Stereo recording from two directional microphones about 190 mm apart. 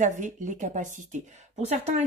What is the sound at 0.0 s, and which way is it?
A woman's voice, 40° right (ahead or behind).